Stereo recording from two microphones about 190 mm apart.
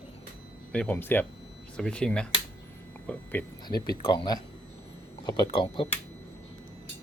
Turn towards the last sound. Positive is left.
turn(degrees=25)  # may be behind; listen again after turning